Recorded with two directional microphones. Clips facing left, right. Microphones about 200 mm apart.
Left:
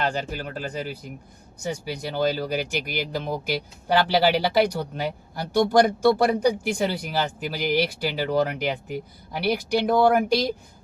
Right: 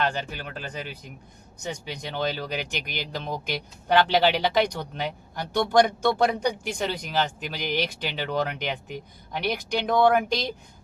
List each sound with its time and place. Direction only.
0.3 s speech: 40° left (ahead or behind)
1.6 s speech: 10° left (ahead or behind)